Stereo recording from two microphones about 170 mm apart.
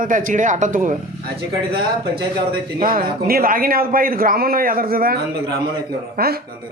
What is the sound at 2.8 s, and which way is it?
A man's voice, 60° right (ahead or behind).